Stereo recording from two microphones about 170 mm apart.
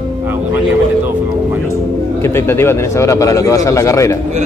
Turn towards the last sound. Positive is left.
turn(degrees=15)  # may be behind; listen again after turning